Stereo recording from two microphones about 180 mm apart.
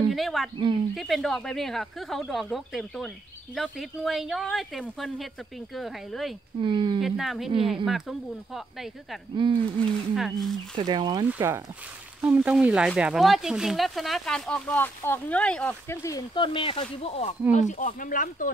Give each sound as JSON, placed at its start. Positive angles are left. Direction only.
{"t": 0.1, "sound": "speech", "side_deg": 0}
{"t": 6.6, "sound": "speech", "side_deg": -25}
{"t": 7.0, "sound": "speech", "side_deg": 0}
{"t": 9.3, "sound": "speech", "side_deg": -25}
{"t": 10.1, "sound": "speech", "side_deg": 0}
{"t": 10.8, "sound": "speech", "side_deg": -25}
{"t": 11.2, "sound": "speech", "side_deg": -15}